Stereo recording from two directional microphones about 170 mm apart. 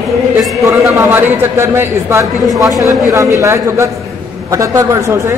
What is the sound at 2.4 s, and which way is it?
Speech, centre (ahead or behind).